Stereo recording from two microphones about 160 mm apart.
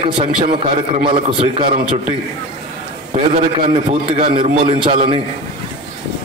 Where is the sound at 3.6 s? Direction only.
40° right (ahead or behind).